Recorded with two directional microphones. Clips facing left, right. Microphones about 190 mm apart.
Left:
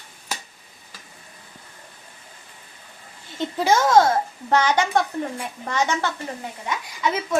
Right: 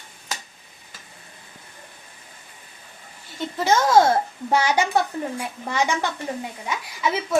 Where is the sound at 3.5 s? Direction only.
10° left (ahead or behind).